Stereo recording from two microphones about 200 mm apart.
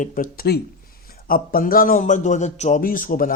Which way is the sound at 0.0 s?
40° left (ahead or behind).